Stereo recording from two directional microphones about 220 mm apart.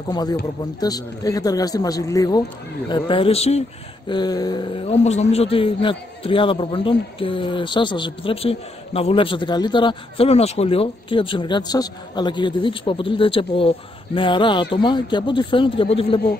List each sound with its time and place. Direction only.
0.1 s a man's voice: 20° left (ahead or behind)
4.1 s a man's voice: 20° left (ahead or behind)